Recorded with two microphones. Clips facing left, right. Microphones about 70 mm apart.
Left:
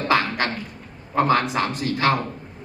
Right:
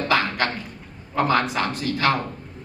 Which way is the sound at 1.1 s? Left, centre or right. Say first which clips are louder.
Left 1 dB; left.